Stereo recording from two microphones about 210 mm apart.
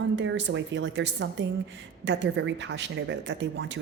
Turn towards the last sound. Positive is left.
turn(degrees=-60)  # may be behind; listen again after turning